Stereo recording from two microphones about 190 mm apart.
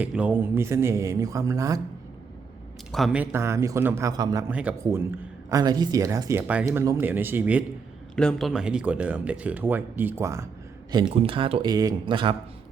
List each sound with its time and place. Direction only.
0.0 s speech: 5° right (ahead or behind)
2.9 s speech: centre (ahead or behind); by 4.4 s 20° right (ahead or behind)
4.4 s speech: 10° right (ahead or behind)
8.1 s speech: 5° left (ahead or behind); by 10.5 s 15° right (ahead or behind)
11.2 s speech: 30° right (ahead or behind)